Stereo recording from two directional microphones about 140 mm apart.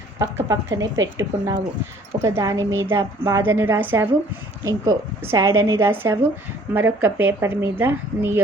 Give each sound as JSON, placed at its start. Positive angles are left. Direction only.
{"t": 0.2, "sound": "a woman's voice", "side_deg": -20}